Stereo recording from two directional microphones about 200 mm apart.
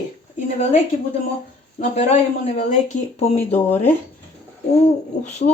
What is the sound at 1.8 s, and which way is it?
Speech, 30° left (ahead or behind).